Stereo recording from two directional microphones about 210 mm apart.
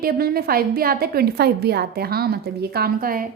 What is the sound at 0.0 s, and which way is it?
A woman's voice, 45° right (ahead or behind).